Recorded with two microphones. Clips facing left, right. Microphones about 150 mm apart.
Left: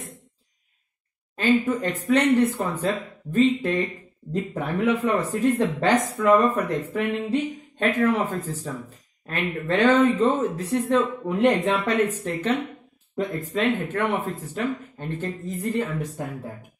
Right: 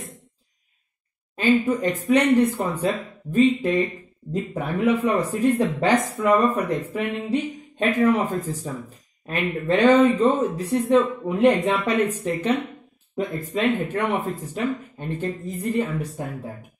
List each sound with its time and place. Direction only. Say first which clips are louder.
1.3 s speech: right 1 dB; 15° right (ahead or behind)